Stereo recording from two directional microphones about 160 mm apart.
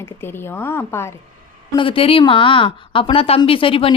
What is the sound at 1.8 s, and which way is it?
A woman's voice, 35° left (ahead or behind).